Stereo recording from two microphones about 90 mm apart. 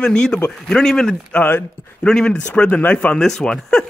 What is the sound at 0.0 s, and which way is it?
Speech, 10° left (ahead or behind).